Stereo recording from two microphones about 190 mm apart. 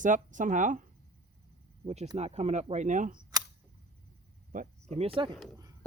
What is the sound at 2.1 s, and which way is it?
Speech, 35° right (ahead or behind).